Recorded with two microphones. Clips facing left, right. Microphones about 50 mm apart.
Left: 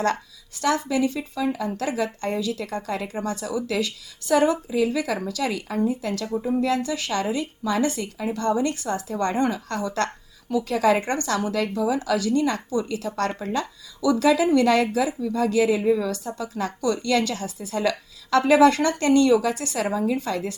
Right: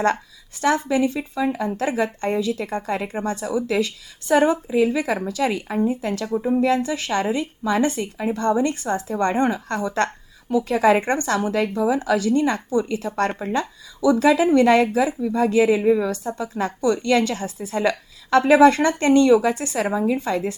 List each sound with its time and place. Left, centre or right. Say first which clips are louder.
0.6 s speech: right 3 dB; right